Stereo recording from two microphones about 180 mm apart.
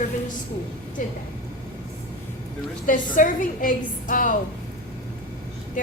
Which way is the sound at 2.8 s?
45° left (ahead or behind).